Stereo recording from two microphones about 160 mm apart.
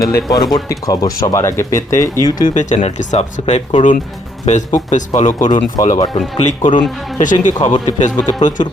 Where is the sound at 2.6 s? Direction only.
45° left (ahead or behind).